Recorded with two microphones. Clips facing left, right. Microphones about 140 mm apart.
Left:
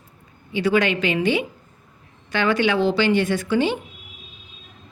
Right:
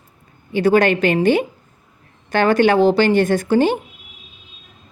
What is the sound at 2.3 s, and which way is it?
A woman's voice, 45° right (ahead or behind).